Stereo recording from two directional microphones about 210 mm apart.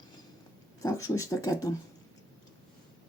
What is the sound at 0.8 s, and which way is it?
Speech, 15° left (ahead or behind).